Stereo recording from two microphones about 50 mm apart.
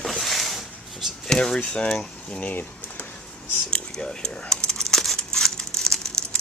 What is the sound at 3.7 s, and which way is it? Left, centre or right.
Speech, centre.